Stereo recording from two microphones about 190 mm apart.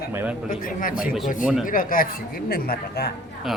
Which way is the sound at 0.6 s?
45° left (ahead or behind).